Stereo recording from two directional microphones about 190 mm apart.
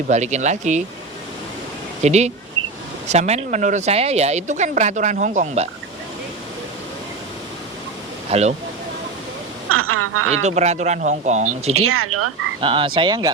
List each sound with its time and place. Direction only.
0.1 s speech: 40° right (ahead or behind)
2.0 s speech: 35° right (ahead or behind)
8.3 s speech: 35° right (ahead or behind)
9.6 s speech: 90° right
10.4 s speech: 35° right (ahead or behind)
12.5 s speech: 25° right (ahead or behind)